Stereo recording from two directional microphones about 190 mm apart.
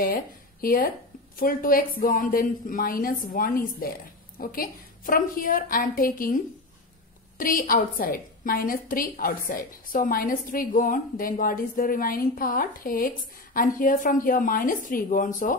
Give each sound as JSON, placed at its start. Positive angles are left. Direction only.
{"t": 0.0, "sound": "a woman's voice", "side_deg": 50}